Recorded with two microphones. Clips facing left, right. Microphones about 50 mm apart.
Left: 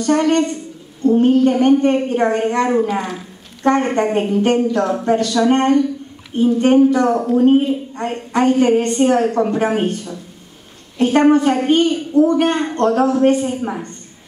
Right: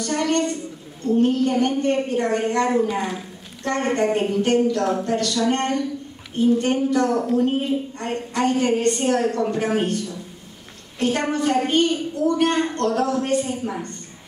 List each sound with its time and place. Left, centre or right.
0.1 s a woman's voice: left